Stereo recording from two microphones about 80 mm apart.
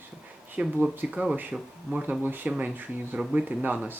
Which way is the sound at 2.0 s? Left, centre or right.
Right.